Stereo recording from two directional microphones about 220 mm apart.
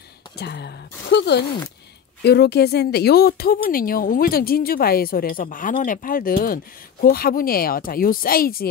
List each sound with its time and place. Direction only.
0.4 s speech: 50° left (ahead or behind)